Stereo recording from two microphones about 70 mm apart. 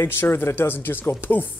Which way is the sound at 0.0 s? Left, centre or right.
Left.